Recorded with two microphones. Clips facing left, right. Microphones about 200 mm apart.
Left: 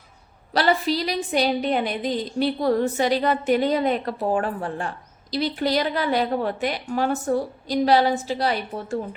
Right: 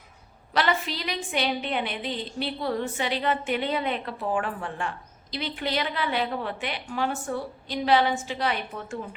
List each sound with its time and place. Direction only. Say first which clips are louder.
0.5 s a woman's voice: left 5 dB; 35° left (ahead or behind)